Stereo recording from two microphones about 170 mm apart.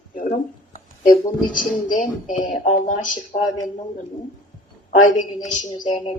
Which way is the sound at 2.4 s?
50° left (ahead or behind).